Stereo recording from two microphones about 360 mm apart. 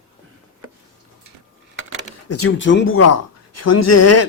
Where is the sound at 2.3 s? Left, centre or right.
Left.